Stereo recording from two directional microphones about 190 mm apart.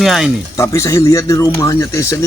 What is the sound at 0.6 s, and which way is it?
A man's voice, 15° left (ahead or behind).